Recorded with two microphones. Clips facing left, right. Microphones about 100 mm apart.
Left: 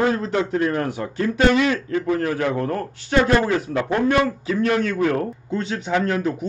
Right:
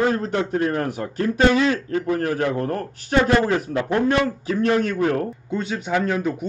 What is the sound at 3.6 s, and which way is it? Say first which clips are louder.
Speech: even; 30° left (ahead or behind).